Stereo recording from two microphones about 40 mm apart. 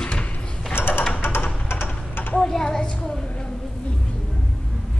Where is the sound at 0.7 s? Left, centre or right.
Left.